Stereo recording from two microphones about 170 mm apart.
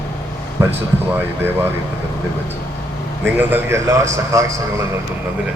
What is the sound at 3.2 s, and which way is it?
A man's voice, 10° right (ahead or behind).